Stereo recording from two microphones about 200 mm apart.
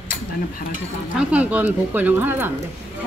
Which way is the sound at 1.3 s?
5° right (ahead or behind).